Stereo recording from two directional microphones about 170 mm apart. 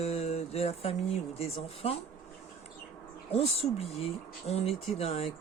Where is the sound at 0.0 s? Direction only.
40° left (ahead or behind).